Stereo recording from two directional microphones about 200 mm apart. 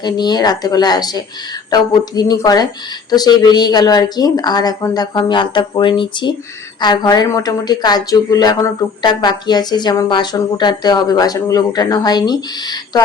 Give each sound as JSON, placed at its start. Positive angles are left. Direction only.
{"t": 0.0, "sound": "speech", "side_deg": 20}